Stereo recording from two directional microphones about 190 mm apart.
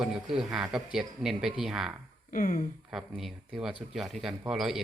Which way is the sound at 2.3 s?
45° left (ahead or behind).